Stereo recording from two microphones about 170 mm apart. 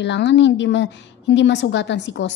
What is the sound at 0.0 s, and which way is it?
A woman's voice, 90° left.